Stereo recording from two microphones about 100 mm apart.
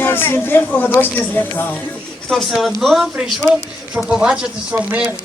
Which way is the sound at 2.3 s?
Centre (ahead or behind).